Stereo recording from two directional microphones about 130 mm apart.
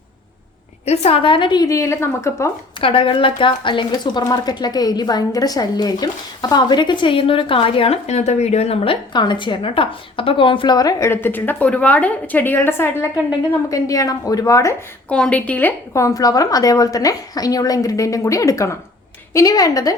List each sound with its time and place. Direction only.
0.9 s a woman's voice: 50° left (ahead or behind); by 2.5 s 20° left (ahead or behind)
2.8 s a woman's voice: 45° left (ahead or behind); by 14.8 s 25° left (ahead or behind)
15.1 s a woman's voice: 10° left (ahead or behind); by 20.0 s 25° left (ahead or behind)